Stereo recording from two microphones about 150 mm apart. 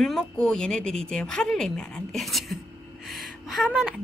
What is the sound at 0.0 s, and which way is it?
A woman's voice, 5° left (ahead or behind).